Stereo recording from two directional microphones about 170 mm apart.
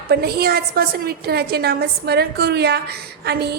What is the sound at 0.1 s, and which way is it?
A woman's voice, 65° right (ahead or behind).